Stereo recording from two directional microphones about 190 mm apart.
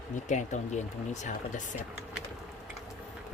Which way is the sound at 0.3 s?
40° left (ahead or behind).